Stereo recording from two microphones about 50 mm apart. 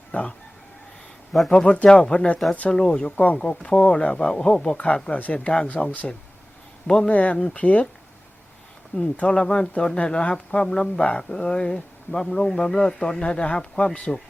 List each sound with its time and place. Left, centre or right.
0.1 s speech: left
1.5 s speech: centre
5.1 s speech: left
6.8 s speech: centre
7.1 s speech: left
9.1 s speech: left